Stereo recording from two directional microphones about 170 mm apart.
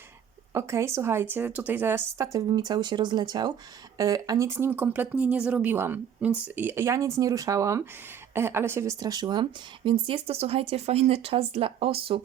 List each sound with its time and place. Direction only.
0.5 s speech: 15° right (ahead or behind); by 12.2 s 35° right (ahead or behind)